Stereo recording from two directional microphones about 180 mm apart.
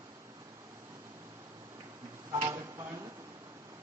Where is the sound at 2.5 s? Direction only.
15° right (ahead or behind).